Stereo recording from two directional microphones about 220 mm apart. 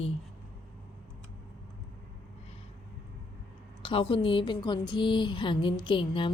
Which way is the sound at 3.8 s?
25° left (ahead or behind).